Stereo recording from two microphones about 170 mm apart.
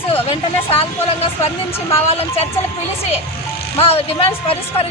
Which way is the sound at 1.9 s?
35° left (ahead or behind).